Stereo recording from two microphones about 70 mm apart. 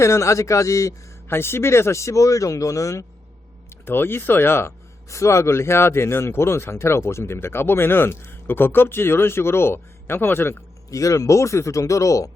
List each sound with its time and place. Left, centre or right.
0.0 s speech: left
1.3 s speech: left
3.8 s speech: left
10.9 s speech: left